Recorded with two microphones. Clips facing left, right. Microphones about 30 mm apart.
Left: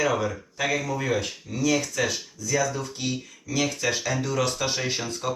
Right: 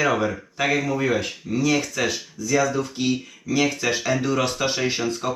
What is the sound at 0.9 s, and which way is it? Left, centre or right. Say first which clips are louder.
Speech: right 4 dB; centre.